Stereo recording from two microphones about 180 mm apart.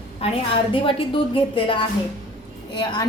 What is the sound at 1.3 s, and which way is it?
Speech, 30° left (ahead or behind).